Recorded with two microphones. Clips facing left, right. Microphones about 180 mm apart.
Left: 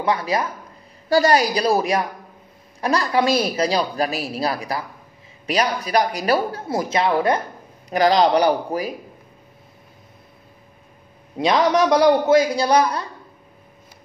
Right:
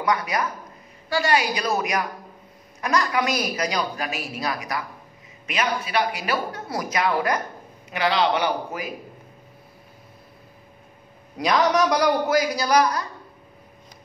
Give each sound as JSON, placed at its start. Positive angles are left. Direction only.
{"t": 0.0, "sound": "a man's voice", "side_deg": 25}
{"t": 1.0, "sound": "a woman's voice", "side_deg": 40}
{"t": 7.9, "sound": "a woman's voice", "side_deg": 40}
{"t": 11.3, "sound": "a man's voice", "side_deg": 25}